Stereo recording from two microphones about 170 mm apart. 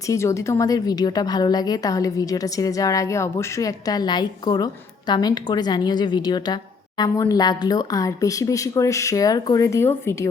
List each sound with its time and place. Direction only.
0.1 s a woman's voice: 15° left (ahead or behind)